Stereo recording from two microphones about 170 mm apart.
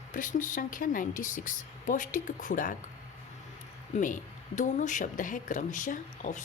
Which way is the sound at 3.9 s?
50° left (ahead or behind).